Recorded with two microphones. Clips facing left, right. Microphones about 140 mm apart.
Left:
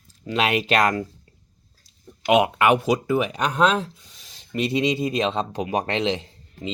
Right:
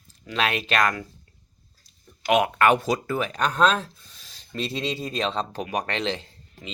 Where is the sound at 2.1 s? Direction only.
20° left (ahead or behind).